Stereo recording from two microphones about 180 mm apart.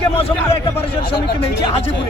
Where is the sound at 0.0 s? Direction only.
35° left (ahead or behind).